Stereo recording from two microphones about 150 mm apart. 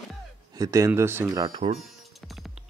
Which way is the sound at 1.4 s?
40° right (ahead or behind).